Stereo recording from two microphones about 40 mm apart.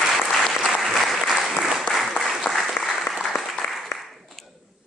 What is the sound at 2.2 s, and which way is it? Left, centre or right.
Applause, centre.